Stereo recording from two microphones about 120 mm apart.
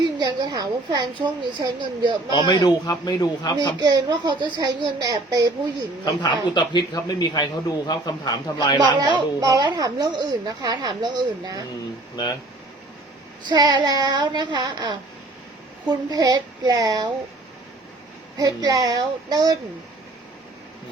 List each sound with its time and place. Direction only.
0.2 s speech: 35° right (ahead or behind)
2.3 s a man's voice: 35° left (ahead or behind)
3.8 s speech: 35° right (ahead or behind)
6.1 s a man's voice: 40° left (ahead or behind)
8.8 s speech: 35° right (ahead or behind)
12.1 s a man's voice: 35° left (ahead or behind)
13.5 s speech: 40° right (ahead or behind)
16.0 s speech: 35° right (ahead or behind)
18.3 s speech: 30° right (ahead or behind)